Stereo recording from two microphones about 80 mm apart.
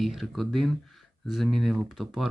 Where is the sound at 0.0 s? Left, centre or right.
Centre.